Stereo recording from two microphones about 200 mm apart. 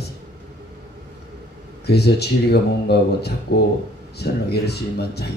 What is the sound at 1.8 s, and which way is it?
Speech, 55° left (ahead or behind).